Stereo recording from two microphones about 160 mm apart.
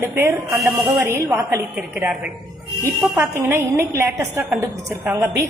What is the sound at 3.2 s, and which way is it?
A woman's voice, 15° right (ahead or behind).